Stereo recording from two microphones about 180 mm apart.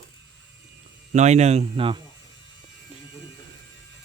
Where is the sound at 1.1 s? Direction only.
40° right (ahead or behind).